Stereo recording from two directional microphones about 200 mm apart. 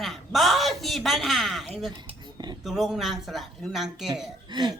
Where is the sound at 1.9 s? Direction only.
20° right (ahead or behind).